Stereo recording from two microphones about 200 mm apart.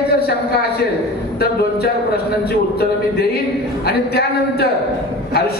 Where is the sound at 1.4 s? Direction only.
50° left (ahead or behind).